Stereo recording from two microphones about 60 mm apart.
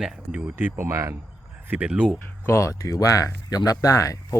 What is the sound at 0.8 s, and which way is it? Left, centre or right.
Speech, right.